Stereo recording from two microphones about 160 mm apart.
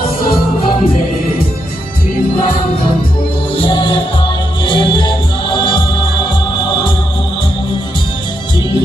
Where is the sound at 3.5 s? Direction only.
35° left (ahead or behind).